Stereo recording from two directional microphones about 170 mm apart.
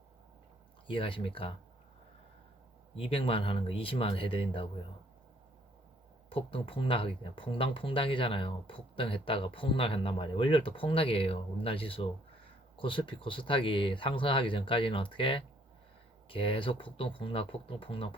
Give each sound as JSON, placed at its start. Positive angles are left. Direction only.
{"t": 0.9, "sound": "speech", "side_deg": 30}
{"t": 2.9, "sound": "speech", "side_deg": 35}
{"t": 6.3, "sound": "speech", "side_deg": 30}